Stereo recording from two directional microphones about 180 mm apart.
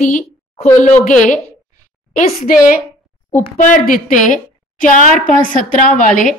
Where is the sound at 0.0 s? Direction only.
45° left (ahead or behind).